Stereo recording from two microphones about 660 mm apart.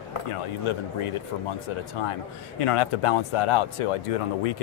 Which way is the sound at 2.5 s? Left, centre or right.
Left.